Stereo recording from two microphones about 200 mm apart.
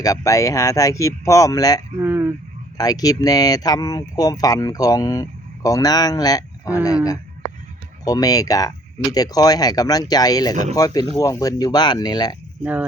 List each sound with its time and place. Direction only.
0.0 s speech: 15° left (ahead or behind)
2.0 s speech: 10° right (ahead or behind)
2.7 s speech: 20° left (ahead or behind)